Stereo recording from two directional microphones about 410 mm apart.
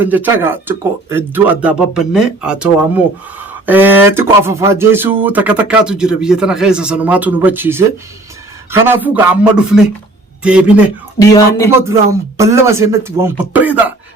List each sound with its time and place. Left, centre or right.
0.0 s speech: centre
11.2 s speech: centre
11.7 s speech: centre